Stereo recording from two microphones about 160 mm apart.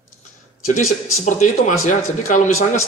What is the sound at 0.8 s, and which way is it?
A man's voice, 50° left (ahead or behind).